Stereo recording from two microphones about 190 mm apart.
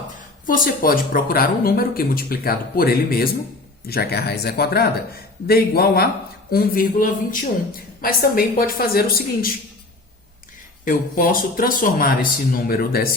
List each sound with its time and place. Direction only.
0.2 s speech: 45° left (ahead or behind)
10.8 s speech: 45° left (ahead or behind)